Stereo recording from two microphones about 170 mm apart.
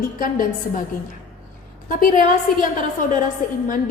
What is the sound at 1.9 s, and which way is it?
Speech, 50° left (ahead or behind).